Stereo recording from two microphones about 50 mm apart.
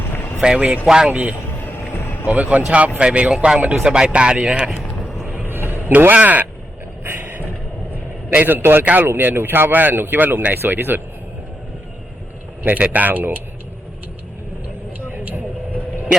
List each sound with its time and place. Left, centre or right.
0.4 s speech: centre
1.1 s speech: right
1.6 s vehicle: left
2.2 s speech: right
3.6 s speech: right
3.8 s speech: centre
5.2 s vehicle: right
6.1 s speech: right
7.0 s a sound: right
8.3 s speech: right
8.8 s speech: right
9.0 s speech: right
12.7 s speech: right
15.1 s vehicle: right